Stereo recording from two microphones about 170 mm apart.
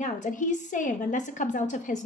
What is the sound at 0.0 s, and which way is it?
A woman's voice, 50° left (ahead or behind).